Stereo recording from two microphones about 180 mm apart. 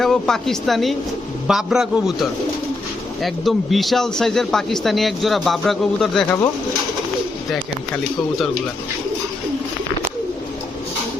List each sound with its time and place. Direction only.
0.0 s a man's voice: centre (ahead or behind)
3.2 s a man's voice: centre (ahead or behind)